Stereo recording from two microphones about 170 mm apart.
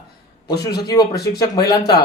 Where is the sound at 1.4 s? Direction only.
25° left (ahead or behind).